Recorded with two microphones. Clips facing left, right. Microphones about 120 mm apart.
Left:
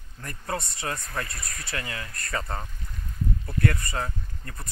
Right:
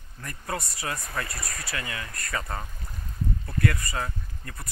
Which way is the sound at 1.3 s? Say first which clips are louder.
Right 3 dB; 30° right (ahead or behind).